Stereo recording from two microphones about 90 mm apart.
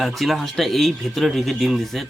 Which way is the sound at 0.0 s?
Centre (ahead or behind).